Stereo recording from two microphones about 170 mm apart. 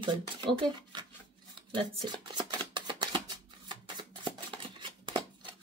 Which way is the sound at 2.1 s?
25° right (ahead or behind).